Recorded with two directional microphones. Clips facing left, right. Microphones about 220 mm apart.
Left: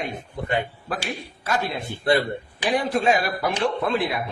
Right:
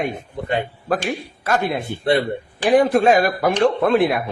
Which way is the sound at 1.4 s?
55° right (ahead or behind).